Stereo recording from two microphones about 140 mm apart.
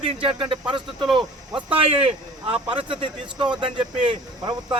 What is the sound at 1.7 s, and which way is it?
Speech, 45° right (ahead or behind).